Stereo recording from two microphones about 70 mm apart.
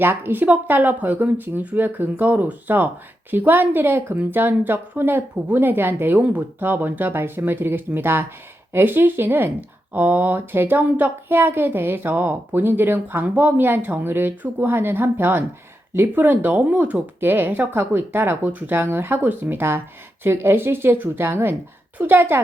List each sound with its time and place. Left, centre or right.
0.0 s a woman's voice: right